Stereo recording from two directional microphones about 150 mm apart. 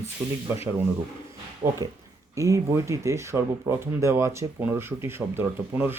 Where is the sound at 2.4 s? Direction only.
20° right (ahead or behind).